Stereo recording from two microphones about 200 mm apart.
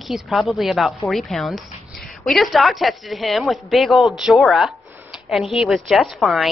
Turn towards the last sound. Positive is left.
turn(degrees=0)  # may be behind; listen again after turning